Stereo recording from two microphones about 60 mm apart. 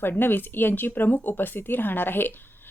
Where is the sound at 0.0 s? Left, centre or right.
Left.